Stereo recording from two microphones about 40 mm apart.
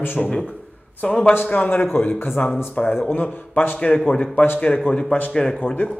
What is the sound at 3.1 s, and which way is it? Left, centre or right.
Speech, left.